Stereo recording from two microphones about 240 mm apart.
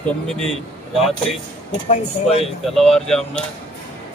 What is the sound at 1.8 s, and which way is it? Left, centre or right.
Speech, left.